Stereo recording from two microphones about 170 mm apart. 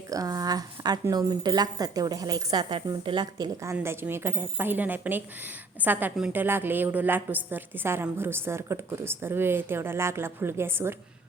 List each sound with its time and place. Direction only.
0.1 s a woman's voice: 20° right (ahead or behind)